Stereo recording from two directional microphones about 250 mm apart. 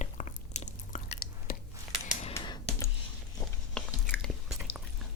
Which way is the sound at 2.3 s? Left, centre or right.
Centre.